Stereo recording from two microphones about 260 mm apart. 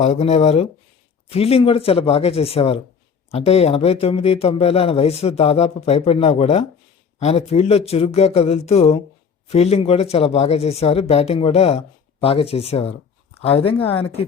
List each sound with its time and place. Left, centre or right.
0.0 s speech: left